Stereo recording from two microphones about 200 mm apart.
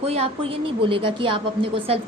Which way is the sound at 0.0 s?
30° right (ahead or behind).